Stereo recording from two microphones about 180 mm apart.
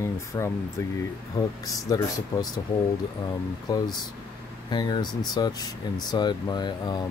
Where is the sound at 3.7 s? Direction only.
20° left (ahead or behind).